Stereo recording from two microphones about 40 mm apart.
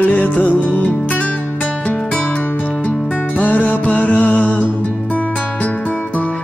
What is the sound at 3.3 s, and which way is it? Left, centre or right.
Music, left.